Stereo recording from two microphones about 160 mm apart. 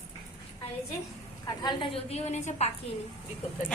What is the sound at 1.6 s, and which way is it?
Speech, 35° left (ahead or behind).